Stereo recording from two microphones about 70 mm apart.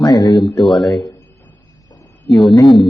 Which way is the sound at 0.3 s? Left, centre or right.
Centre.